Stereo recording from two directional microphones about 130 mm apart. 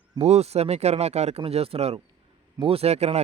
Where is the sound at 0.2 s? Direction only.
55° right (ahead or behind).